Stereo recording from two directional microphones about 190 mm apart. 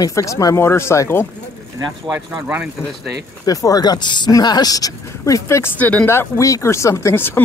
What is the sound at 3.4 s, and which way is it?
Speech, 20° left (ahead or behind).